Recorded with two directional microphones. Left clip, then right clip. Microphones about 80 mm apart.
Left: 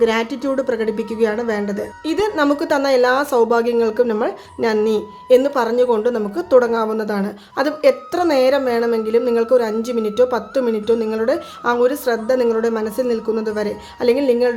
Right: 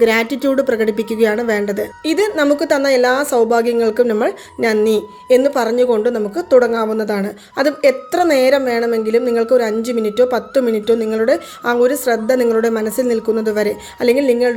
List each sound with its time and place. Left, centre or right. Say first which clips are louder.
0.0 s a woman's voice: right 4 dB; right
2.5 s a woman's voice: right 2 dB; right
5.3 s a woman's voice: right 1 dB; right
12.3 s a woman's voice: right 2 dB; right